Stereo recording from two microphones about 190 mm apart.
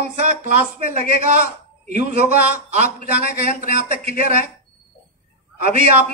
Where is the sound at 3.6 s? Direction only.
35° right (ahead or behind).